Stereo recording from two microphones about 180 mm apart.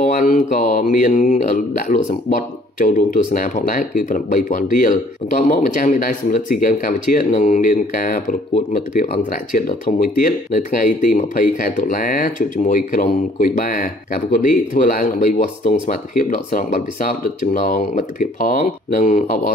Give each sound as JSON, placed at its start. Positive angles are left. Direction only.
{"t": 0.0, "sound": "speech", "side_deg": 45}